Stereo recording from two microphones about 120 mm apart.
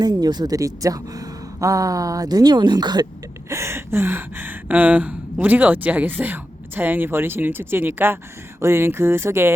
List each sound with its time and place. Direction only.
0.0 s speech: 35° right (ahead or behind)
3.5 s speech: 20° right (ahead or behind)